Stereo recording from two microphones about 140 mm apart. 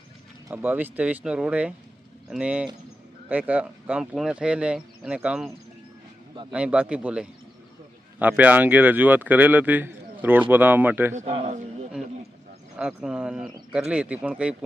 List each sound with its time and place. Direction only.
0.4 s speech: 15° right (ahead or behind)
6.5 s speech: 10° right (ahead or behind)
11.1 s a man's voice: 60° right (ahead or behind)
12.7 s speech: 5° right (ahead or behind)